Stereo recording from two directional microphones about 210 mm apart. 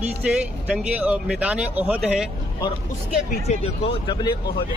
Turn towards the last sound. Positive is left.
turn(degrees=20)  # may be behind; listen again after turning